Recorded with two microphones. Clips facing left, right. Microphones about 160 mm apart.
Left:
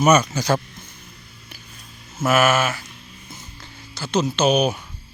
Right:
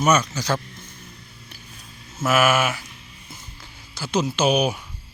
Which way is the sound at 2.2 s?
5° right (ahead or behind).